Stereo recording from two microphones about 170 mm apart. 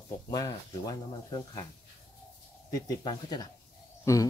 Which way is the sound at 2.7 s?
25° left (ahead or behind).